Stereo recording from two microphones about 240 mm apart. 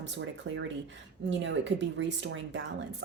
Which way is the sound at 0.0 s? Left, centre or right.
Right.